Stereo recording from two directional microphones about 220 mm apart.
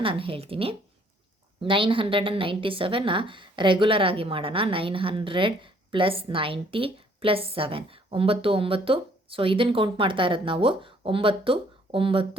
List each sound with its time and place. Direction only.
0.0 s a woman's voice: 25° right (ahead or behind)